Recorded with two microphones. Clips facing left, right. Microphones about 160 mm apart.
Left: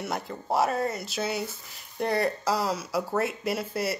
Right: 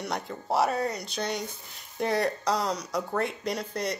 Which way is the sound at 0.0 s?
Centre (ahead or behind).